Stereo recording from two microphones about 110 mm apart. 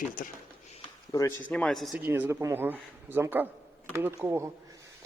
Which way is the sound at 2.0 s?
20° right (ahead or behind).